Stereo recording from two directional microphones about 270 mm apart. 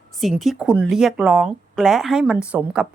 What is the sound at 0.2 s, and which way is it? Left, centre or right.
A woman's voice, centre.